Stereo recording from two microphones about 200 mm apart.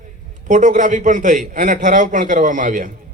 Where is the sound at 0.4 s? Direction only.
40° right (ahead or behind).